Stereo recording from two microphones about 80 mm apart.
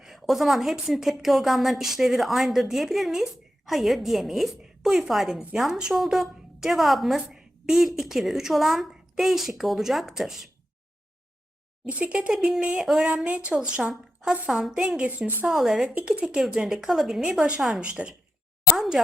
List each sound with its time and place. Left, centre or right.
0.0 s a woman's voice: centre
11.9 s speech: centre
13.2 s a woman's voice: centre
16.0 s speech: centre
16.2 s a woman's voice: centre